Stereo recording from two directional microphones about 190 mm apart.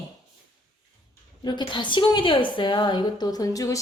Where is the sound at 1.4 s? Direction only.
25° left (ahead or behind).